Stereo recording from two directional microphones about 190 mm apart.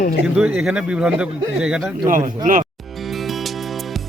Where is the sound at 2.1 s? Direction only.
45° right (ahead or behind).